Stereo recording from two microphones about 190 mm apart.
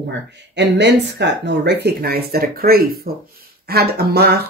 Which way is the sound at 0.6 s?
65° right (ahead or behind).